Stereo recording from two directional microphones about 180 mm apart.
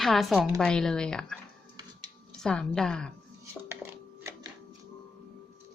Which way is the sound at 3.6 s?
15° right (ahead or behind).